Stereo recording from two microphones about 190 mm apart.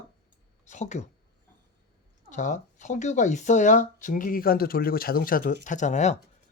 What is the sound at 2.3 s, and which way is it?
Speech, 40° left (ahead or behind).